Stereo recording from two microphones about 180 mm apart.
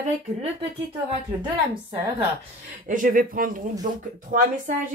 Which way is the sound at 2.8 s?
50° right (ahead or behind).